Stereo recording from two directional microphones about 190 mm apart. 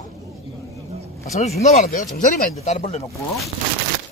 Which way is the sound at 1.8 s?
45° left (ahead or behind).